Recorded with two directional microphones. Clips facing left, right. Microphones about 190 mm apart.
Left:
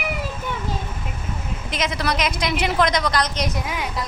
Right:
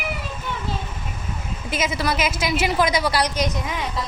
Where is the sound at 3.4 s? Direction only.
Centre (ahead or behind).